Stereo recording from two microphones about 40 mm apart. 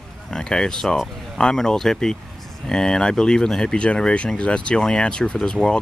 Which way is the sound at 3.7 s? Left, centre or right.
Left.